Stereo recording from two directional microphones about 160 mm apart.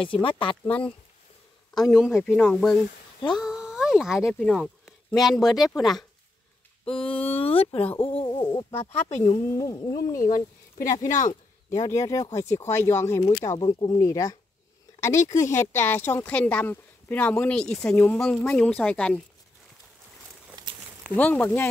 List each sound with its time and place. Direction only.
0.0 s speech: 35° left (ahead or behind)
2.3 s speech: 5° left (ahead or behind)
6.9 s speech: 35° left (ahead or behind)
10.2 s speech: 55° left (ahead or behind)
11.7 s speech: 20° left (ahead or behind)
20.6 s a sound: 25° right (ahead or behind)
21.2 s speech: 10° left (ahead or behind)